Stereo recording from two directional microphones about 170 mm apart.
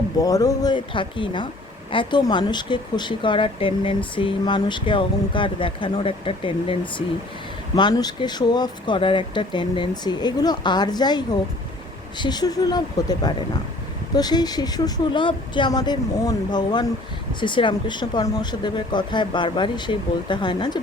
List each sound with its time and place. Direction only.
0.2 s speech: 20° left (ahead or behind)